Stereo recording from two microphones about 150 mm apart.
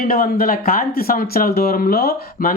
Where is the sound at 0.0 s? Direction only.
70° left (ahead or behind).